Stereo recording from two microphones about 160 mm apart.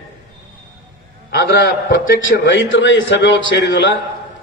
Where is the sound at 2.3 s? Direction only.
70° left (ahead or behind).